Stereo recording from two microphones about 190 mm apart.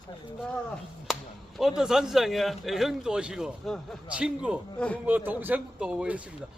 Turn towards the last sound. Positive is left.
turn(degrees=-5)  # may be behind; listen again after turning